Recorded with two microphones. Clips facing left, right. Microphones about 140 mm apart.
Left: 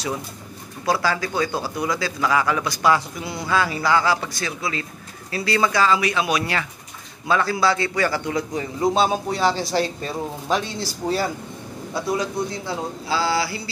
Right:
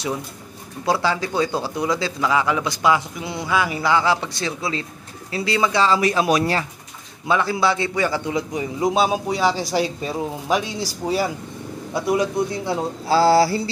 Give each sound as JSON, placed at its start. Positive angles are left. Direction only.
{"t": 0.8, "sound": "speech", "side_deg": -20}
{"t": 5.9, "sound": "speech", "side_deg": -40}
{"t": 7.2, "sound": "a man's voice", "side_deg": -20}
{"t": 11.9, "sound": "speech", "side_deg": -20}
{"t": 13.1, "sound": "speech", "side_deg": -35}